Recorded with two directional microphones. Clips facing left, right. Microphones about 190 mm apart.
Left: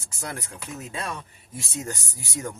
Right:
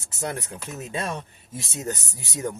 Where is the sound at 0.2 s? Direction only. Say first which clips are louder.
Right 5 dB; 20° right (ahead or behind).